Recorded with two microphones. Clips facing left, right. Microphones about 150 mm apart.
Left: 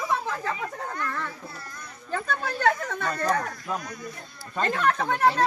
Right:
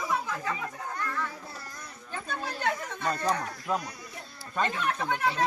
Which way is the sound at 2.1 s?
75° left (ahead or behind).